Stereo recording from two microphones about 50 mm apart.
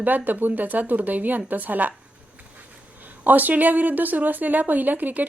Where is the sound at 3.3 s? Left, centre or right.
Right.